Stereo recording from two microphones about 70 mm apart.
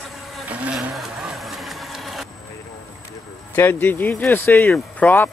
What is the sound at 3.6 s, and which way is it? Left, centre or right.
Speech, left.